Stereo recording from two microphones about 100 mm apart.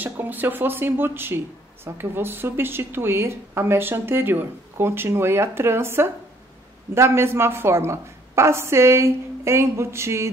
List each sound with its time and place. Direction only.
0.0 s a woman's voice: 20° right (ahead or behind)